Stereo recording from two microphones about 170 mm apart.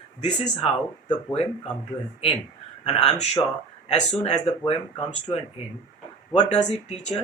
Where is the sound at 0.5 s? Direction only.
40° left (ahead or behind).